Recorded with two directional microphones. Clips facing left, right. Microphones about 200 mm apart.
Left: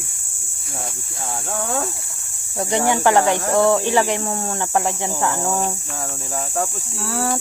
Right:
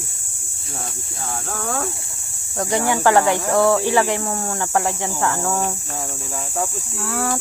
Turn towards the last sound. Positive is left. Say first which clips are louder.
# even
turn(degrees=30)  # may be behind; listen again after turning